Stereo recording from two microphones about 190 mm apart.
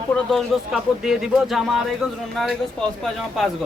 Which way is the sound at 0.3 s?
Centre (ahead or behind).